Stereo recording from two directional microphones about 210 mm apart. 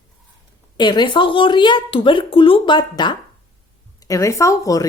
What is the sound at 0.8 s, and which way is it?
A woman's voice, 20° left (ahead or behind).